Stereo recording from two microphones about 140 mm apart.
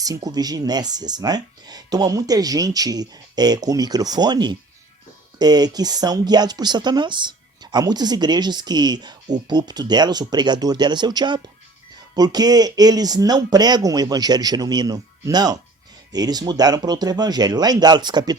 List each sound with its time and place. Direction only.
0.0 s speech: 25° right (ahead or behind)